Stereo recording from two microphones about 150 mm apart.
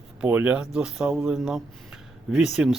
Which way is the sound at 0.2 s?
10° right (ahead or behind).